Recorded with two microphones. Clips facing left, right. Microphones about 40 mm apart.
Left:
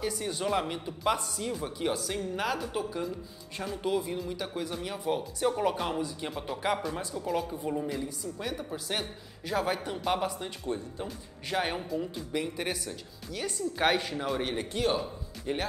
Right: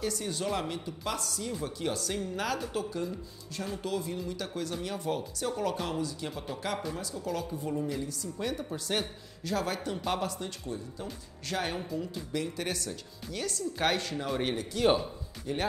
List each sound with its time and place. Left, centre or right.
0.0 s speech: centre
14.7 s a man's voice: left